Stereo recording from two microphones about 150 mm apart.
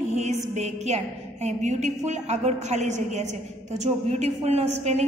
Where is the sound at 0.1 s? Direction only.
50° right (ahead or behind).